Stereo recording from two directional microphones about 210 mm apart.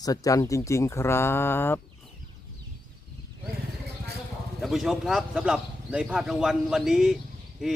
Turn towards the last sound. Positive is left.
turn(degrees=0)  # may be behind; listen again after turning